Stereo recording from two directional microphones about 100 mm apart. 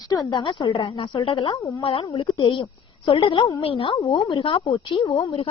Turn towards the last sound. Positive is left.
turn(degrees=75)  # may be behind; listen again after turning